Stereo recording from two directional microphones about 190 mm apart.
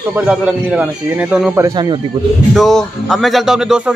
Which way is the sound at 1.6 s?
20° right (ahead or behind).